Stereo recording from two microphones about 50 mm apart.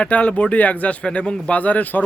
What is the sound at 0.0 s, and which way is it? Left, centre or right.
Speech, left.